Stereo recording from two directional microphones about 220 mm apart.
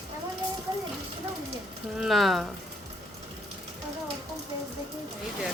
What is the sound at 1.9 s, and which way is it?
Speech, centre (ahead or behind).